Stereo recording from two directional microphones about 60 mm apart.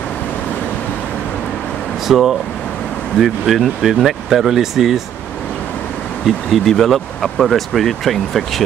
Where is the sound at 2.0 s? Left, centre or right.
Centre.